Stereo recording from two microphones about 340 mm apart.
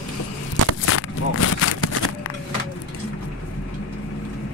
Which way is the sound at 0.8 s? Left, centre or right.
Left.